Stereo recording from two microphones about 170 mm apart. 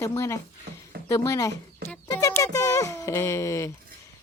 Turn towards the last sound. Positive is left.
turn(degrees=15)  # may be behind; listen again after turning